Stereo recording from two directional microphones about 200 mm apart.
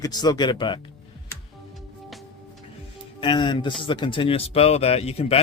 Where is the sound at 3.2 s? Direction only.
25° left (ahead or behind).